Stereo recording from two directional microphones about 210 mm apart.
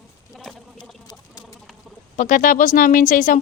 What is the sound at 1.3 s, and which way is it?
Chicken, 15° left (ahead or behind).